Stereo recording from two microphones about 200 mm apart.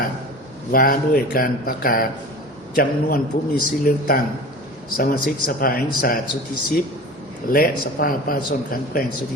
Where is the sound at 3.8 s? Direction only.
45° left (ahead or behind).